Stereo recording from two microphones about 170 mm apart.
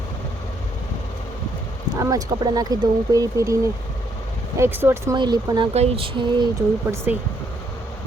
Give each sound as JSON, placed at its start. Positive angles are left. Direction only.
{"t": 2.0, "sound": "speech", "side_deg": -20}
{"t": 5.1, "sound": "speech", "side_deg": -25}
{"t": 5.7, "sound": "a sound", "side_deg": -35}
{"t": 6.9, "sound": "speech", "side_deg": -15}